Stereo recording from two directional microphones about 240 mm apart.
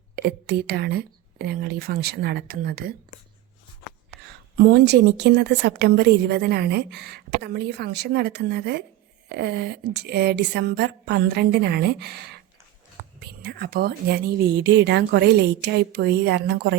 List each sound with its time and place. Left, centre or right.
0.2 s speech: right
4.3 s a woman's voice: right
13.4 s a woman's voice: right